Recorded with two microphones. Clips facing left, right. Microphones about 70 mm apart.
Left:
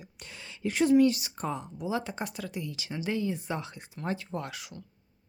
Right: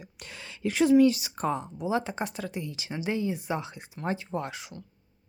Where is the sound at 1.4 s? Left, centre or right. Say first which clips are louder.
Right 5 dB; right.